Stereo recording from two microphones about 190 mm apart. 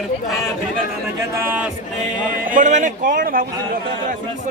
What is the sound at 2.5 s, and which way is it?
Speech, 40° right (ahead or behind).